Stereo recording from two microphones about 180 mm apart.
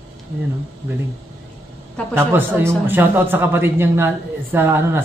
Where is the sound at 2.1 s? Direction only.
15° right (ahead or behind).